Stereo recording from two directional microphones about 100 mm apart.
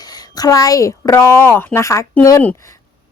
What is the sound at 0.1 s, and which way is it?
A woman's voice, 40° left (ahead or behind).